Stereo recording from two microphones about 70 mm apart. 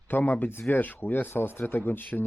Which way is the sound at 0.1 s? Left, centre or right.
Left.